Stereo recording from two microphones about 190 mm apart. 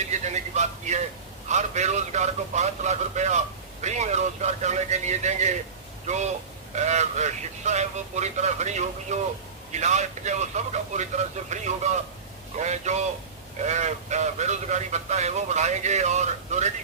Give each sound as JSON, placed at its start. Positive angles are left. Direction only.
{"t": 0.1, "sound": "a sound", "side_deg": -35}
{"t": 1.5, "sound": "a man's voice", "side_deg": -40}
{"t": 6.7, "sound": "a man's voice", "side_deg": -35}